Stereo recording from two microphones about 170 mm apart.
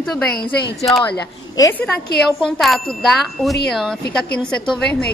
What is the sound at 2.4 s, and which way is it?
A woman's voice, centre (ahead or behind).